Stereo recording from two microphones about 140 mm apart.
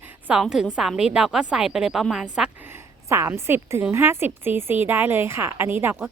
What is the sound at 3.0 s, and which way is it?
Speech, 20° right (ahead or behind).